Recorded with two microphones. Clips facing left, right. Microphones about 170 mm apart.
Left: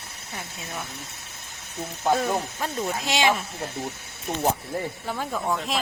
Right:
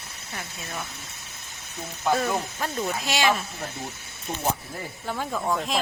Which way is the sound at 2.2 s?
20° left (ahead or behind).